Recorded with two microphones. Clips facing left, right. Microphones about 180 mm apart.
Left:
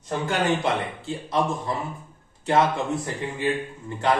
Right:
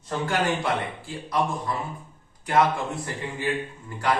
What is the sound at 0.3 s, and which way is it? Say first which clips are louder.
A man's voice: left 2 dB; 25° left (ahead or behind).